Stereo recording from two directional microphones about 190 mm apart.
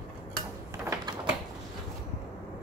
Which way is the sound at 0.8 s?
15° right (ahead or behind).